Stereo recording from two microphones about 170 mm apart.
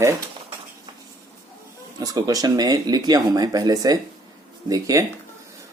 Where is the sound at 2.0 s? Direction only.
20° right (ahead or behind).